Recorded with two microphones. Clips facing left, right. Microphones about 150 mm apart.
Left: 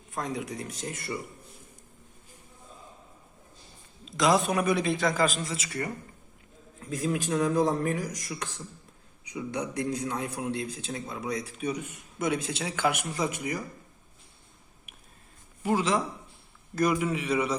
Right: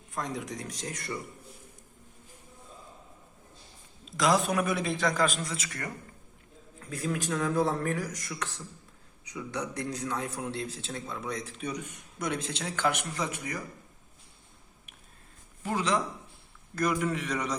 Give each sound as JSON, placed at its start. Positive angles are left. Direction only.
{"t": 0.1, "sound": "a man's voice", "side_deg": 0}
{"t": 4.2, "sound": "a man's voice", "side_deg": 0}
{"t": 6.9, "sound": "a man's voice", "side_deg": 20}
{"t": 15.6, "sound": "a man's voice", "side_deg": 5}